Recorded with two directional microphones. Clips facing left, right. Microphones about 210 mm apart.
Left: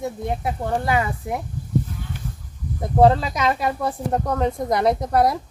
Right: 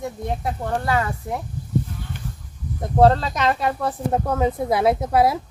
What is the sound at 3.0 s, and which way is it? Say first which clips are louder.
Speech: even; 5° left (ahead or behind).